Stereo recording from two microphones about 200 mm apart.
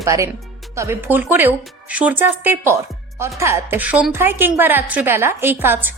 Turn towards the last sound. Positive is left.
turn(degrees=-10)  # may be behind; listen again after turning